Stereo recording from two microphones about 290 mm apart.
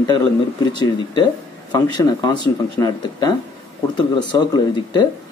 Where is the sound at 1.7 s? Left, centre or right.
Centre.